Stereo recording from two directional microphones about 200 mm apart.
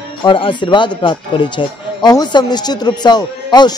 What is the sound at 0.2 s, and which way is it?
Speech, 25° left (ahead or behind).